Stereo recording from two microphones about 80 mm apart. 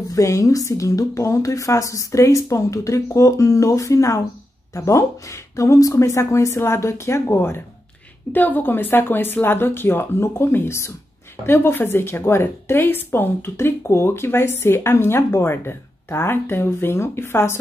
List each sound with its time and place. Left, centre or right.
0.1 s a woman's voice: left